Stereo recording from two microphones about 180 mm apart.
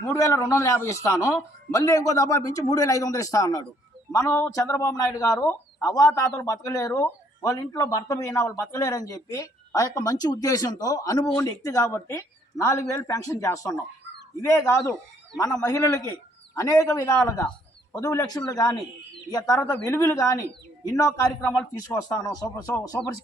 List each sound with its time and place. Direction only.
0.1 s a man's voice: 15° left (ahead or behind)
16.6 s a man's voice: 20° left (ahead or behind)